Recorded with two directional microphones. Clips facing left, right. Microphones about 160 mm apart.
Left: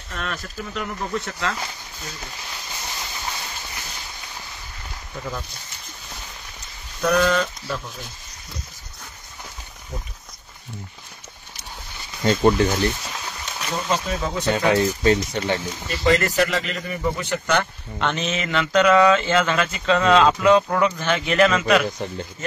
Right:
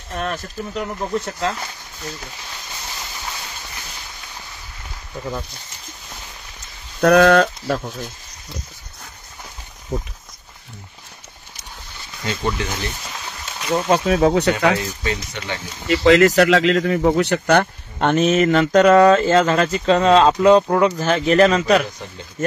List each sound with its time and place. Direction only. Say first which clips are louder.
0.2 s speech: right 5 dB; 35° right (ahead or behind)
2.9 s train: even; centre (ahead or behind)
7.0 s speech: right 7 dB; 70° right (ahead or behind)
12.3 s speech: left 7 dB; 40° left (ahead or behind)
13.8 s speech: right 10 dB; 65° right (ahead or behind)
14.7 s speech: left 4 dB; 35° left (ahead or behind)
15.9 s speech: right 8 dB; 90° right; by 21.8 s 35° right (ahead or behind)